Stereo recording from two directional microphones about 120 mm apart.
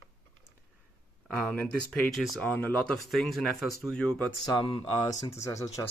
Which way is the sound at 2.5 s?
15° left (ahead or behind).